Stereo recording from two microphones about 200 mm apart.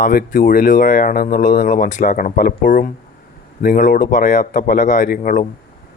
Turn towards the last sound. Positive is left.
turn(degrees=45)  # may be behind; listen again after turning